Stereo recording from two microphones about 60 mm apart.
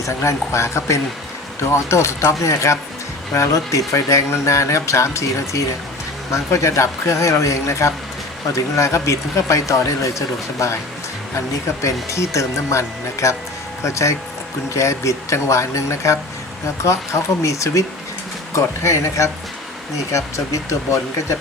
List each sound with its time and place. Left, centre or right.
0.0 s speech: left